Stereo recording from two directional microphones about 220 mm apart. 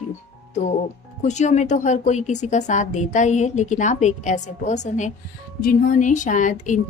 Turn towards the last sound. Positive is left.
turn(degrees=35)  # may be behind; listen again after turning